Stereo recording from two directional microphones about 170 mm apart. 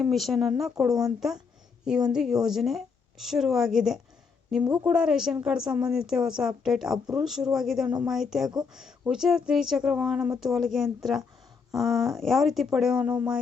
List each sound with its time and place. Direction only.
0.0 s a woman's voice: centre (ahead or behind)